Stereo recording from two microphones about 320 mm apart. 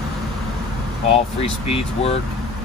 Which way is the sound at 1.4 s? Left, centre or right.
Centre.